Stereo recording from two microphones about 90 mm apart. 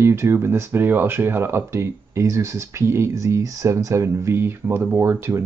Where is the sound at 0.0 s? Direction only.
30° right (ahead or behind).